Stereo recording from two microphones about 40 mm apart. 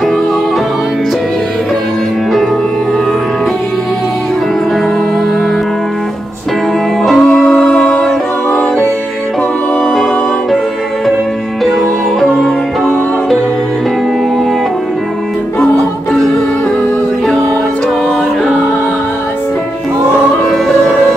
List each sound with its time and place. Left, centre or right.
7.0 s music: centre
12.4 s music: centre
15.6 s music: centre
20.4 s music: centre